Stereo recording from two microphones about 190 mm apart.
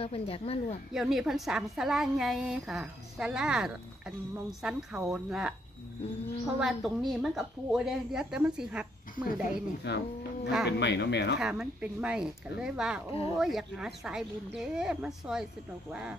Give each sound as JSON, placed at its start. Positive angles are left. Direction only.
{"t": 0.0, "sound": "a woman's voice", "side_deg": 30}
{"t": 0.9, "sound": "a woman's voice", "side_deg": -5}
{"t": 9.4, "sound": "speech", "side_deg": 60}
{"t": 11.3, "sound": "a woman's voice", "side_deg": -5}